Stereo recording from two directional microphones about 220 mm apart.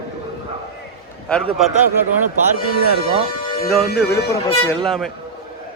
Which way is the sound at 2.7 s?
45° left (ahead or behind).